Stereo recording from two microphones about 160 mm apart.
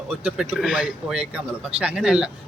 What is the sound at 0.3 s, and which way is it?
Speech, 5° right (ahead or behind).